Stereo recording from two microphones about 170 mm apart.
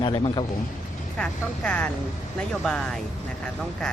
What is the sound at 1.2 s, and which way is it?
Speech, 5° left (ahead or behind).